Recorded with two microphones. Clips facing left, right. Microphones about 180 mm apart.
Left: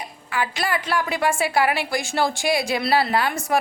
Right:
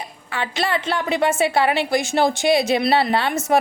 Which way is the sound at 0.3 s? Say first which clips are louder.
Right 1 dB; 25° right (ahead or behind).